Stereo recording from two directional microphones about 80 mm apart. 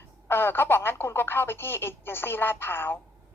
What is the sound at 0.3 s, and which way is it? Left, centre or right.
A woman's voice, left.